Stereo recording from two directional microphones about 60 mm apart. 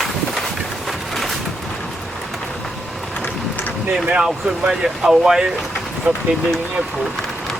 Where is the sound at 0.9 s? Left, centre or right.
Centre.